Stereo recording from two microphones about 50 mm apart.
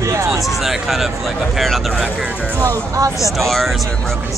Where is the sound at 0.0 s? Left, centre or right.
Right.